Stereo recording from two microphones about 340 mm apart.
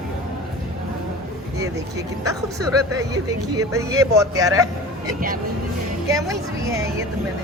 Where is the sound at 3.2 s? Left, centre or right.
Centre.